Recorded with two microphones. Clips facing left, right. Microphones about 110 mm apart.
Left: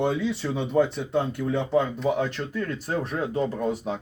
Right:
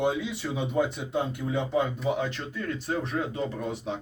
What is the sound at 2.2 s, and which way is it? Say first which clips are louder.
Speech: left 4 dB; 45° left (ahead or behind).